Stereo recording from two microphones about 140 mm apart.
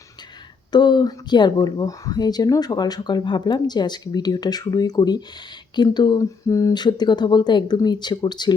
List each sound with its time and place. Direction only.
0.7 s speech: 30° left (ahead or behind)